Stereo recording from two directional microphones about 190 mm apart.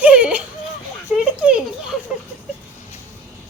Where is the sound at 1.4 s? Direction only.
5° right (ahead or behind).